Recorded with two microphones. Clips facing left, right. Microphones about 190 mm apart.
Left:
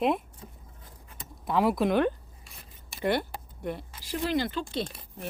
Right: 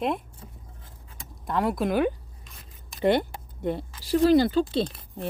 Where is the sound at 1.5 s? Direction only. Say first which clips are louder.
Left 1 dB; 5° left (ahead or behind).